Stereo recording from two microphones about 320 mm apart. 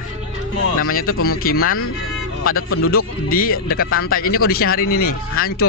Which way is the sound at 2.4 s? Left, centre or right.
Left.